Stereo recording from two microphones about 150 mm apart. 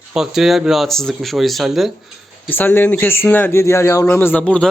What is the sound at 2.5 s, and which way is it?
Speech, 10° left (ahead or behind).